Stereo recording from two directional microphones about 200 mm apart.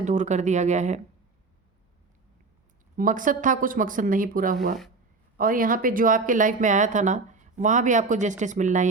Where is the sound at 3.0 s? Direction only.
40° right (ahead or behind).